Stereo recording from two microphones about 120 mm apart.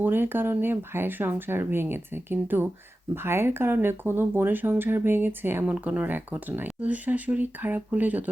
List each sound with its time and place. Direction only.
0.0 s speech: 15° right (ahead or behind)